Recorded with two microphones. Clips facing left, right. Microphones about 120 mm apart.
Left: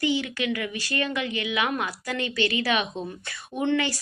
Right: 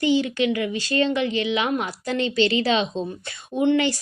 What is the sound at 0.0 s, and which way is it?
A woman's voice, 25° right (ahead or behind).